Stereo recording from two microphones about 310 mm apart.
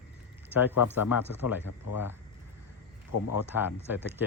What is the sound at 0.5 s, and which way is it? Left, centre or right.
Speech, centre.